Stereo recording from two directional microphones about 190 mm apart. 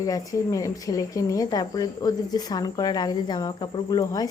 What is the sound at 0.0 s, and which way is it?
A woman's voice, 20° left (ahead or behind).